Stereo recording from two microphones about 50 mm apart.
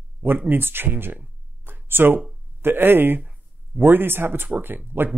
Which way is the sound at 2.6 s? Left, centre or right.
Right.